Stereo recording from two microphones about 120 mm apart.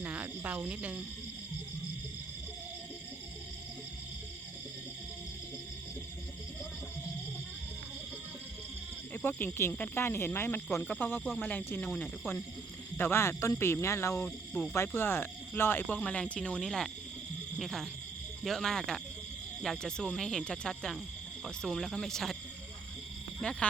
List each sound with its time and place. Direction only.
0.0 s speech: 10° right (ahead or behind)
9.1 s speech: 20° left (ahead or behind)
14.3 s speech: 5° left (ahead or behind)
14.7 s speech: 20° left (ahead or behind); by 22.4 s centre (ahead or behind)
23.4 s speech: 5° left (ahead or behind)